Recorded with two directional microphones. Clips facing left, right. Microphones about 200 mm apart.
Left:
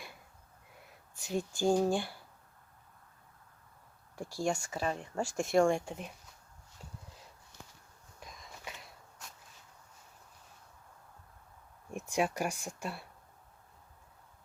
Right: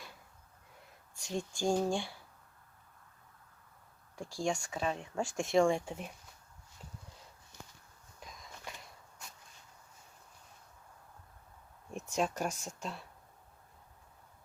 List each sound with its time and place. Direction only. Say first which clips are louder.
1.1 s speech: left 3 dB; 5° left (ahead or behind)
4.1 s speech: left 1 dB; 5° left (ahead or behind)
8.3 s a sound: left 1 dB; centre (ahead or behind)
11.9 s speech: left 2 dB; 15° left (ahead or behind)